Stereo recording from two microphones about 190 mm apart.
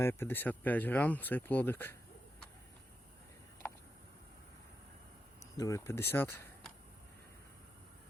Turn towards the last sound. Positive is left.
turn(degrees=10)  # may be behind; listen again after turning